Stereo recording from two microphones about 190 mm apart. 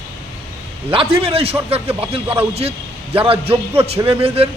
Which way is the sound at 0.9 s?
30° right (ahead or behind).